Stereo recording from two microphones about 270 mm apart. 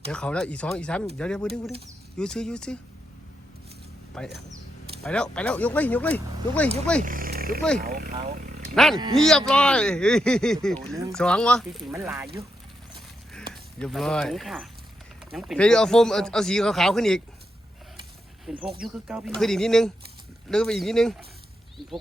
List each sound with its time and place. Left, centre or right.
0.1 s speech: centre
4.2 s speech: centre
7.0 s a sound: right
7.8 s speech: right
8.7 s speech: centre
13.5 s speech: centre
18.7 s speech: centre